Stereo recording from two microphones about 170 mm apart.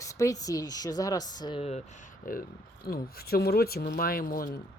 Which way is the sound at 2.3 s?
55° left (ahead or behind).